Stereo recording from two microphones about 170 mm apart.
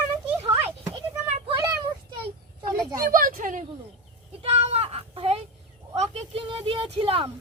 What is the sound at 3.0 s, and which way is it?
Speech, 55° right (ahead or behind).